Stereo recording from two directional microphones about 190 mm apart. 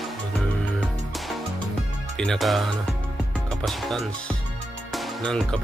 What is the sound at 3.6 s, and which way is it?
Music, centre (ahead or behind).